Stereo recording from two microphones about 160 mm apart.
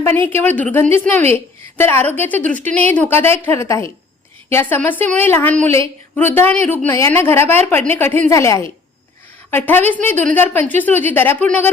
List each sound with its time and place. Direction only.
0.0 s a woman's voice: 10° left (ahead or behind)